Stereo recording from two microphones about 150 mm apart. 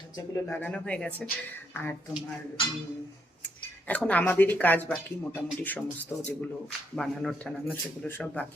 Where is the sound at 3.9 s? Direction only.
10° left (ahead or behind).